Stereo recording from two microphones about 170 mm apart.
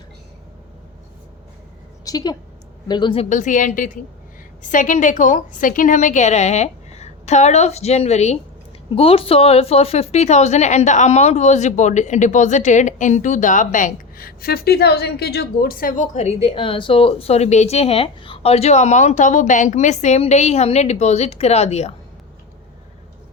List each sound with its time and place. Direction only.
2.0 s speech: 25° left (ahead or behind)
3.2 s a woman's voice: 45° left (ahead or behind)